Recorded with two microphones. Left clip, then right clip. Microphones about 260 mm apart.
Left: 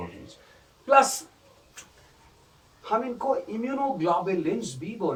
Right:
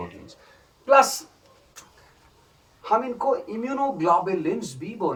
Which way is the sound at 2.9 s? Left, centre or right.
Right.